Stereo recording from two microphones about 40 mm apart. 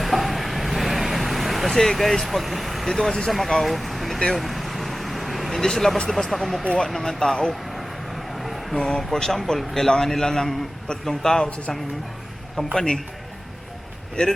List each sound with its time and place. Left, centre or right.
0.0 s vehicle: centre
2.8 s a man's voice: centre
3.6 s vehicle: centre
6.1 s a man's voice: centre
6.7 s a man's voice: centre
8.4 s a sound: centre
8.7 s a man's voice: centre
12.7 s a man's voice: centre